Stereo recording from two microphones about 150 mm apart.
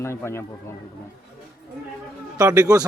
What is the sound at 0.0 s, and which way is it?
Speech, 15° left (ahead or behind).